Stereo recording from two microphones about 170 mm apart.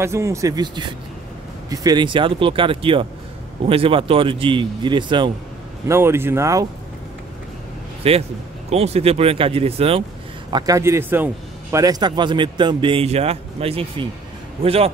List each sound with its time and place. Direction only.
0.0 s speech: 15° right (ahead or behind)
5.9 s speech: 15° right (ahead or behind)
8.0 s speech: 35° right (ahead or behind)
10.5 s speech: 20° right (ahead or behind)